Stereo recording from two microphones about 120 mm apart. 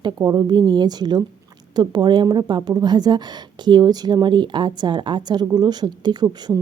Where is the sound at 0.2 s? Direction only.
35° right (ahead or behind).